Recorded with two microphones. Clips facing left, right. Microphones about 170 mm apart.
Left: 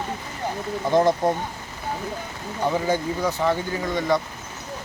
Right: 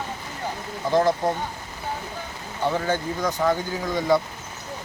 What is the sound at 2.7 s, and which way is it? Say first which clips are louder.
Speech: left 2 dB; 10° left (ahead or behind).